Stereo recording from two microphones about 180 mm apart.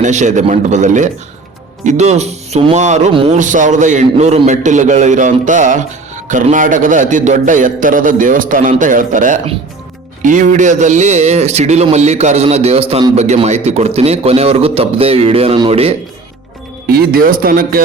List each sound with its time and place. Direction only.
0.0 s a man's voice: 40° right (ahead or behind)
3.1 s speech: 30° right (ahead or behind)
3.3 s a man's voice: 45° right (ahead or behind); by 13.1 s 25° right (ahead or behind)
13.1 s a man's voice: 40° right (ahead or behind)
16.8 s a man's voice: 55° right (ahead or behind)